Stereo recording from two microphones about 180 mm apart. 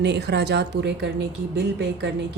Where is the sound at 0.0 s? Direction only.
70° right (ahead or behind).